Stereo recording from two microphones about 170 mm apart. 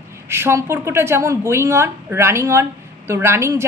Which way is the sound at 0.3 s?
15° right (ahead or behind).